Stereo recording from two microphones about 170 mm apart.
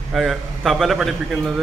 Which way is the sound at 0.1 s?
Centre (ahead or behind).